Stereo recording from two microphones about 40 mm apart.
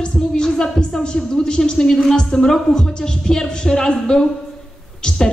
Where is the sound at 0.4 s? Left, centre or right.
Centre.